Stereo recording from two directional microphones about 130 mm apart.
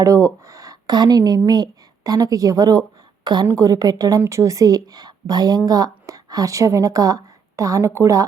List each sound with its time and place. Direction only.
0.0 s a woman's voice: 25° right (ahead or behind)
0.4 s a sound: 25° right (ahead or behind)
1.5 s a woman's voice: 30° right (ahead or behind)